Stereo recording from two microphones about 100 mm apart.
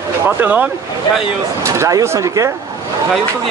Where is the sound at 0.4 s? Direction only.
15° right (ahead or behind).